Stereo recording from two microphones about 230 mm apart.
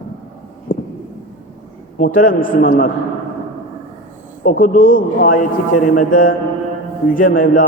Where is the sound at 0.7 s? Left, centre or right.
Left.